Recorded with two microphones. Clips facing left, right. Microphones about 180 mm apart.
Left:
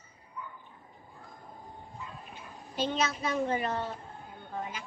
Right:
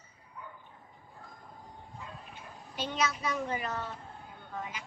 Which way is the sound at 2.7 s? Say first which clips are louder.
Left 3 dB; 30° left (ahead or behind).